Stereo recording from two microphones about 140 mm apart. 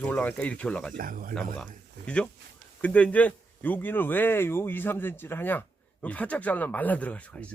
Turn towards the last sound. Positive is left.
turn(degrees=10)  # may be behind; listen again after turning